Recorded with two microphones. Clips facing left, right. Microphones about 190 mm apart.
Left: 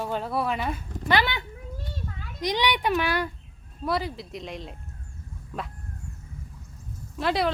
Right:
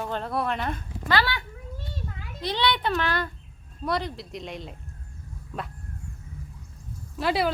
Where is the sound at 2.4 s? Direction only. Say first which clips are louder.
Left 1 dB; 15° left (ahead or behind).